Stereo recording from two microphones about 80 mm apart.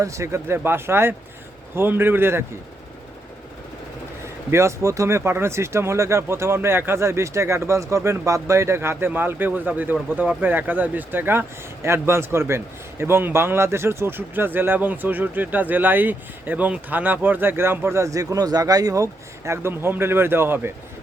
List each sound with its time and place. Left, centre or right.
0.0 s a man's voice: right
4.5 s speech: right